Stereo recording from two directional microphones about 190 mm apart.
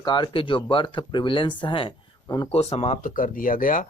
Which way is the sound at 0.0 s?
25° left (ahead or behind).